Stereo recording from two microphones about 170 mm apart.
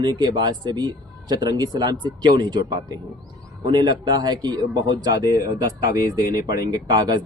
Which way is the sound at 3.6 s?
25° right (ahead or behind).